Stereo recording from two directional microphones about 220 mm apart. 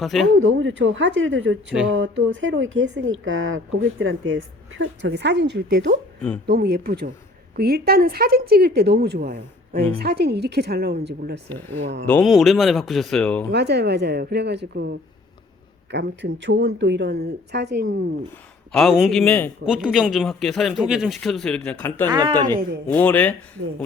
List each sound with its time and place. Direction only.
0.0 s speech: centre (ahead or behind)
0.3 s speech: 60° right (ahead or behind)
11.4 s speech: 10° left (ahead or behind)
13.5 s speech: 50° right (ahead or behind)
18.7 s speech: centre (ahead or behind)
22.1 s a woman's voice: 20° right (ahead or behind)
22.9 s speech: 5° left (ahead or behind)